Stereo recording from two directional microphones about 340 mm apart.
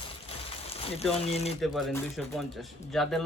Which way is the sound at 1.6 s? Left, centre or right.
Centre.